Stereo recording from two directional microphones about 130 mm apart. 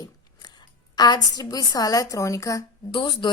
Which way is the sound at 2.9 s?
35° left (ahead or behind).